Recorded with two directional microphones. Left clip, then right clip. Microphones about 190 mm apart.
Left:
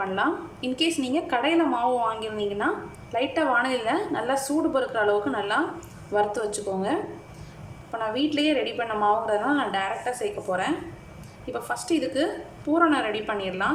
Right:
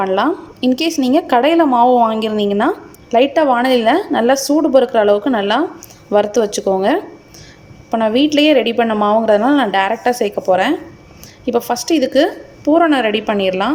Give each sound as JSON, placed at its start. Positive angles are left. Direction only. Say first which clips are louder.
{"t": 0.0, "sound": "a woman's voice", "louder": "right 10 dB", "side_deg": -40}